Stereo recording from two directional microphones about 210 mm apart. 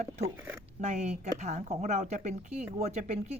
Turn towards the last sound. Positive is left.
turn(degrees=-30)  # may be behind; listen again after turning